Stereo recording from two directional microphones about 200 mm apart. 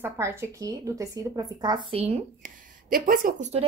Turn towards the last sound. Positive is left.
turn(degrees=-35)  # may be behind; listen again after turning